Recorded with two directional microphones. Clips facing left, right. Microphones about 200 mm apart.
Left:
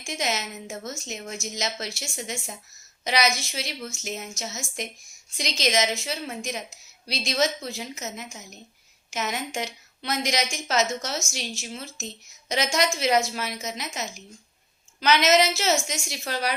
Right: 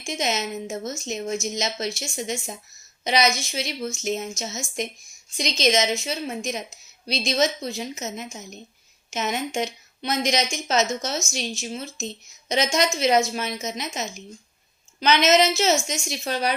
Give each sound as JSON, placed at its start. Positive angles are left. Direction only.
{"t": 0.0, "sound": "a woman's voice", "side_deg": -20}